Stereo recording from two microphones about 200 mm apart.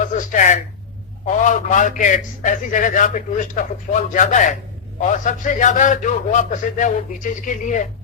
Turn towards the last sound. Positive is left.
turn(degrees=40)  # may be behind; listen again after turning